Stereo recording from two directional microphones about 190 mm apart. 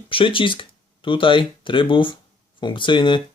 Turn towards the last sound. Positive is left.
turn(degrees=25)  # may be behind; listen again after turning